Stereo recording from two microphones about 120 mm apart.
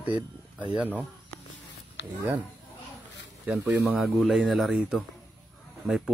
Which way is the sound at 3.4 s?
15° right (ahead or behind).